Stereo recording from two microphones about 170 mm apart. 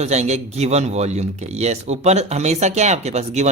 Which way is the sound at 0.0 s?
40° right (ahead or behind).